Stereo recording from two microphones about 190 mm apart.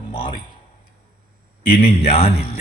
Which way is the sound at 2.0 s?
35° left (ahead or behind).